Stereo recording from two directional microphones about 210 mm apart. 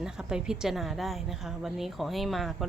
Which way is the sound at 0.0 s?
5° right (ahead or behind).